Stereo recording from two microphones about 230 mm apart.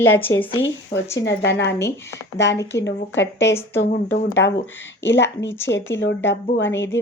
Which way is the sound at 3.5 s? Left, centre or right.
Centre.